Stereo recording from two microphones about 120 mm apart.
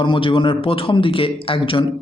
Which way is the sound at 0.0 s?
45° left (ahead or behind).